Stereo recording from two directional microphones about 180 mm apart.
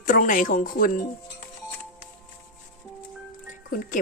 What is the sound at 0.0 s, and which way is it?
Speech, 45° left (ahead or behind).